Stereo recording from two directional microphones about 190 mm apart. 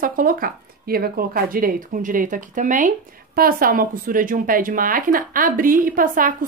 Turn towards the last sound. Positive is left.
turn(degrees=-45)  # may be behind; listen again after turning